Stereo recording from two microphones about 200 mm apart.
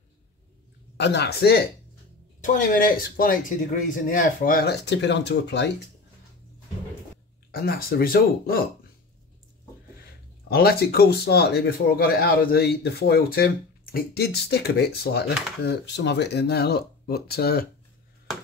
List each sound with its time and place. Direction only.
0.9 s speech: 60° left (ahead or behind)
2.7 s speech: 45° left (ahead or behind)
7.5 s speech: 50° left (ahead or behind)
10.5 s speech: 50° left (ahead or behind)